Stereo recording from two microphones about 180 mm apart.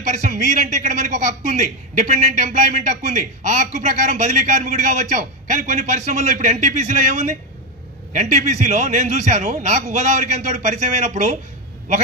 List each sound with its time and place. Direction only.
0.2 s a man's voice: 40° right (ahead or behind)